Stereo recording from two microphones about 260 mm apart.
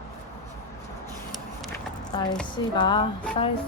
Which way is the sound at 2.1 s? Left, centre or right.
Centre.